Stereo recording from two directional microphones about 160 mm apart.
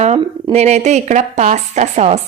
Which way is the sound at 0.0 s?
40° right (ahead or behind).